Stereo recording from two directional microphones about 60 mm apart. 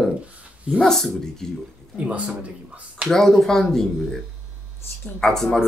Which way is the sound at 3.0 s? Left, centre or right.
Centre.